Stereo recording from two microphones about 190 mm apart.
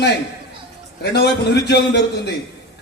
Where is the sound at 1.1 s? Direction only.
60° left (ahead or behind).